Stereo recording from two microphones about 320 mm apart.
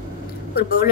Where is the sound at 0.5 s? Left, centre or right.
Left.